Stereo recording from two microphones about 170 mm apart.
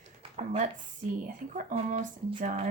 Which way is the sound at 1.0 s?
50° right (ahead or behind).